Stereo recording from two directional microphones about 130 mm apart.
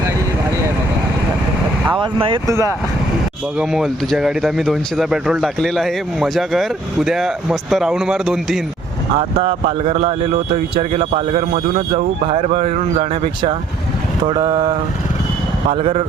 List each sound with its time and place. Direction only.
1.9 s speech: 40° right (ahead or behind)
2.5 s speech: 25° right (ahead or behind)
3.6 s speech: centre (ahead or behind)
9.1 s speech: 45° right (ahead or behind)